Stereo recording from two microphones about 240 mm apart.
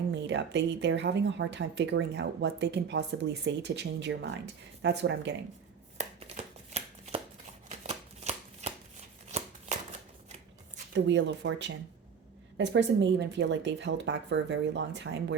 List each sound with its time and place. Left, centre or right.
0.1 s speech: right
6.0 s shuffling cards: right
10.9 s speech: right